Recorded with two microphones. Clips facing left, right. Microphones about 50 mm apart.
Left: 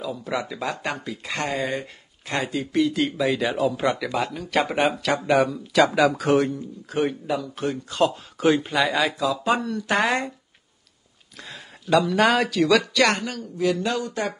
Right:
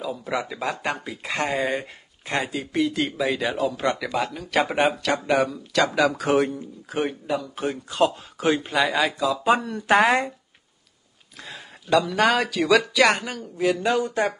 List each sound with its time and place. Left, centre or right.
0.0 s a woman's voice: centre
11.4 s speech: centre; by 14.3 s right